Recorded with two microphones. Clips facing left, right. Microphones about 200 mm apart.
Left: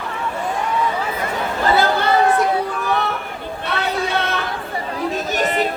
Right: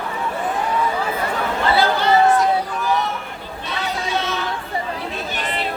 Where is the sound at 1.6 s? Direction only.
45° left (ahead or behind).